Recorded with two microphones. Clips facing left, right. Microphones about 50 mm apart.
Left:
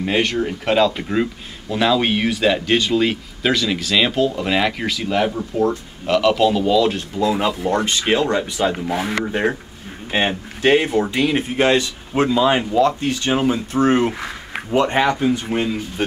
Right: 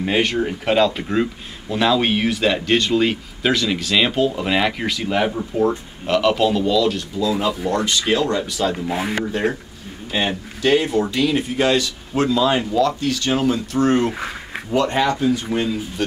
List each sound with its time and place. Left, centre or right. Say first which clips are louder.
0.0 s speech: even; centre
6.6 s speech: left 2 dB; centre
6.9 s speech: left 1 dB; left